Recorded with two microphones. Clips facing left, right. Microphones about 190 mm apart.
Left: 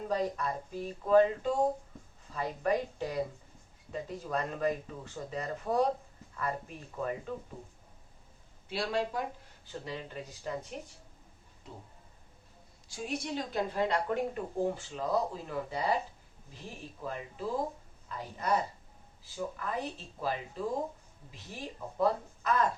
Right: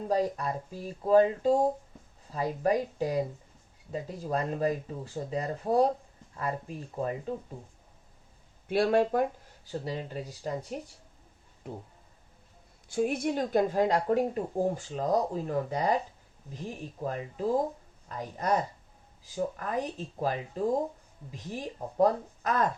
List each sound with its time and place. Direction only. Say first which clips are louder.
0.1 s speech: right 4 dB; 35° right (ahead or behind)
8.6 s speech: right 8 dB; 55° right (ahead or behind)
9.6 s speech: right 6 dB; 40° right (ahead or behind)
12.9 s speech: right 8 dB; 55° right (ahead or behind)